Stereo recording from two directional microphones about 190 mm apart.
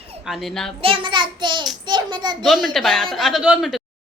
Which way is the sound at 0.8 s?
30° right (ahead or behind).